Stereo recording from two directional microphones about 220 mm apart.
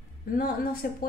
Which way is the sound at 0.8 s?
45° left (ahead or behind).